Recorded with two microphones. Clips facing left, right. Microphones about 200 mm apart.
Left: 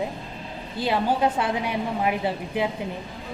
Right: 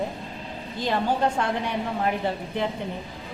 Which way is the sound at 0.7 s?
10° left (ahead or behind).